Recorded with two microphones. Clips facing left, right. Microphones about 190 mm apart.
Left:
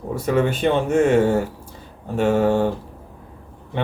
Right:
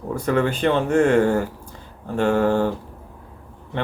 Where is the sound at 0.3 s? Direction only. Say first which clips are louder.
Left 1 dB; 20° left (ahead or behind).